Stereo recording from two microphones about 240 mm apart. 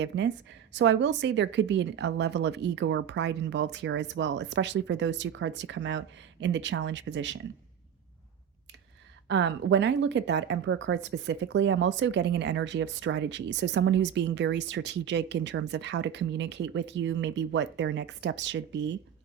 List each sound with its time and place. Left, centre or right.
0.7 s a woman's voice: right
9.2 s a woman's voice: right